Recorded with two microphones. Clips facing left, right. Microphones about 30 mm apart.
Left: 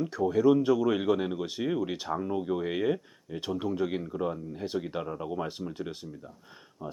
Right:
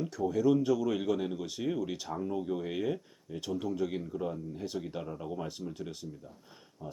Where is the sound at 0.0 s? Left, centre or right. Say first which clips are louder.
Left 4 dB; left.